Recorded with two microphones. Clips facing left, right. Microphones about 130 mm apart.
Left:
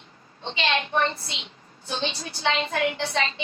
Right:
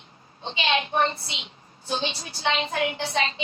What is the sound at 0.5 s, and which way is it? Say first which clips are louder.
Speech: right 1 dB; 20° right (ahead or behind).